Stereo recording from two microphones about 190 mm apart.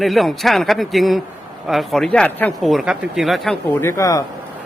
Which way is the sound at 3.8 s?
15° left (ahead or behind).